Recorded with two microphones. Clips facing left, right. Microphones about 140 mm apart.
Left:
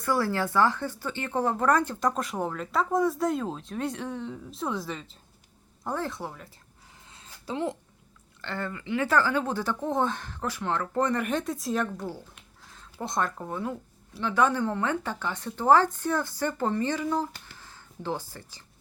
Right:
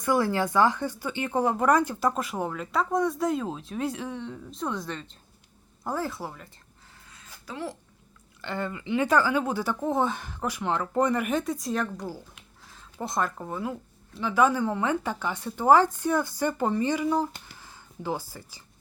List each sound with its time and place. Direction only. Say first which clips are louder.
0.0 s speech: right 2 dB; 15° right (ahead or behind); by 6.5 s centre (ahead or behind)
7.0 s a sound: left 4 dB; 25° left (ahead or behind)
8.4 s speech: right 2 dB; 15° right (ahead or behind)